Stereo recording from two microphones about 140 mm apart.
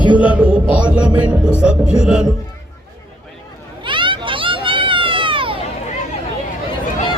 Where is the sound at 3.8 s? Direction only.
35° right (ahead or behind).